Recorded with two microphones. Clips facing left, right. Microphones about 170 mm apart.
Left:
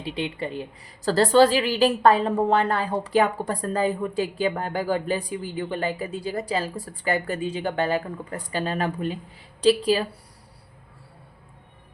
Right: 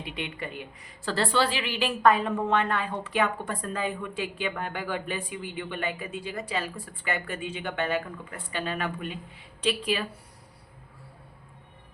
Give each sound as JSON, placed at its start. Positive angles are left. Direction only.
{"t": 0.0, "sound": "a woman's voice", "side_deg": 30}